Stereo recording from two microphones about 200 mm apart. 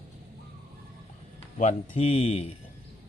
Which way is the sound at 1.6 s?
35° left (ahead or behind).